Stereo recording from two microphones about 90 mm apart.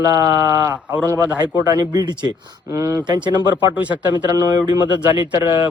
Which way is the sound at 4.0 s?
45° right (ahead or behind).